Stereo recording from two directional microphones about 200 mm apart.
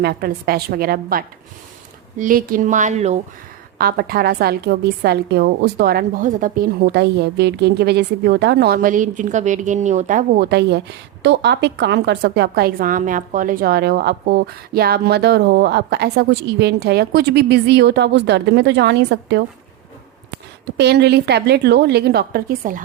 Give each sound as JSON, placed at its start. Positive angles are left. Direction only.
{"t": 0.0, "sound": "a woman's voice", "side_deg": -50}
{"t": 3.8, "sound": "a woman's voice", "side_deg": -50}
{"t": 20.7, "sound": "a woman's voice", "side_deg": -55}